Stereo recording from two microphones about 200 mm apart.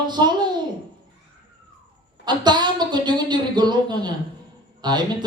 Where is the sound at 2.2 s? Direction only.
20° right (ahead or behind).